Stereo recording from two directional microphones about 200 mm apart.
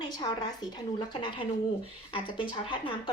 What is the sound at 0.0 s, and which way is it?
Speech, 20° left (ahead or behind).